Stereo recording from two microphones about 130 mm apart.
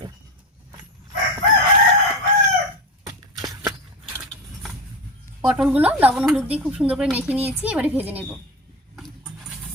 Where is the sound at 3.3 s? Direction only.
30° right (ahead or behind).